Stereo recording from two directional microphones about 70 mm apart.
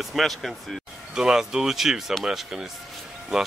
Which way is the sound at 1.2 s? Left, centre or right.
Centre.